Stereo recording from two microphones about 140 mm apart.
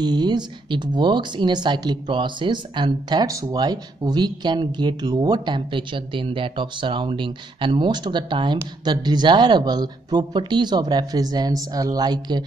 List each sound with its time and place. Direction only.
0.0 s speech: 30° right (ahead or behind)